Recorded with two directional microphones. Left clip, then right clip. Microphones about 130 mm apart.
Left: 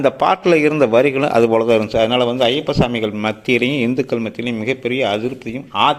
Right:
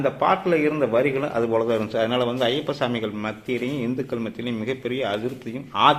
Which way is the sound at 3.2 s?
90° left.